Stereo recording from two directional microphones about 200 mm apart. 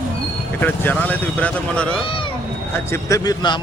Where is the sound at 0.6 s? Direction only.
10° left (ahead or behind).